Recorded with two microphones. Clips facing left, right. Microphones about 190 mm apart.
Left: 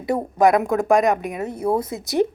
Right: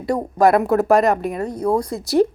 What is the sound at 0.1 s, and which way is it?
A woman's voice, 5° left (ahead or behind).